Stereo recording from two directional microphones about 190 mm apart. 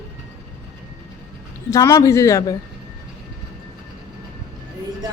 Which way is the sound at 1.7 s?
15° left (ahead or behind).